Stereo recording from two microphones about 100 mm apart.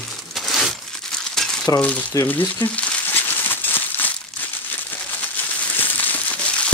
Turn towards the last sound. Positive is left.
turn(degrees=10)  # may be behind; listen again after turning